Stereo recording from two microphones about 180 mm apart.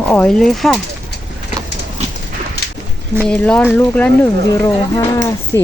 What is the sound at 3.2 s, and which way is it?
Speech, 5° left (ahead or behind).